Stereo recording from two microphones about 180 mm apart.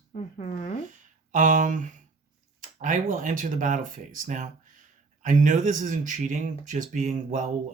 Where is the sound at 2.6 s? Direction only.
45° right (ahead or behind).